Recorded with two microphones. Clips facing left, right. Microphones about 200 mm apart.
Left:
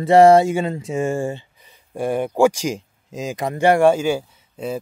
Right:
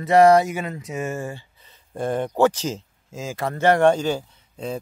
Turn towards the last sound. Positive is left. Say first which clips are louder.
# left 3 dB
turn(degrees=10)  # may be behind; listen again after turning